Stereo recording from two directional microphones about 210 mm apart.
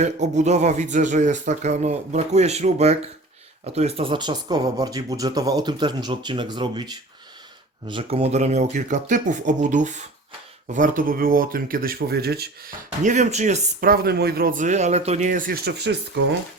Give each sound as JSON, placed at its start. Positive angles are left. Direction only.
{"t": 0.0, "sound": "speech", "side_deg": -35}